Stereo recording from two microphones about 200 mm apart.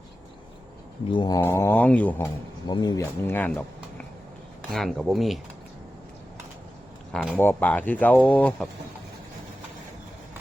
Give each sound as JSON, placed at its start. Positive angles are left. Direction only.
{"t": 1.1, "sound": "cat", "side_deg": 20}
{"t": 1.4, "sound": "speech", "side_deg": 15}
{"t": 7.3, "sound": "speech", "side_deg": 10}